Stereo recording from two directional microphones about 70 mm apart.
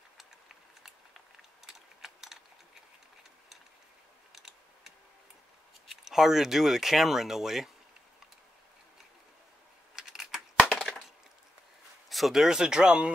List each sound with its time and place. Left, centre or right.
0.8 s a sound: centre
4.4 s typing: centre
5.9 s speech: centre
9.9 s computer keyboard: centre
10.5 s wood: centre
12.1 s speech: centre